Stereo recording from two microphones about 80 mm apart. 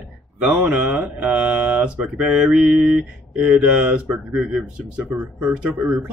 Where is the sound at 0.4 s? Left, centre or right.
Centre.